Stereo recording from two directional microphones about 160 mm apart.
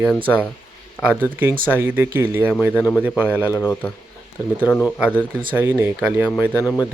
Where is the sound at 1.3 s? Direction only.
10° right (ahead or behind).